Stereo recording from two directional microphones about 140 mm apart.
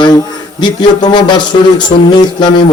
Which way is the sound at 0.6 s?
30° left (ahead or behind).